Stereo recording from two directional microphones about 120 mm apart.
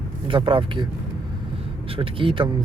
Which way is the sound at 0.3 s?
45° right (ahead or behind).